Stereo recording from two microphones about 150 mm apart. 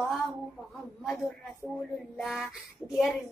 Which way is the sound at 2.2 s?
Centre (ahead or behind).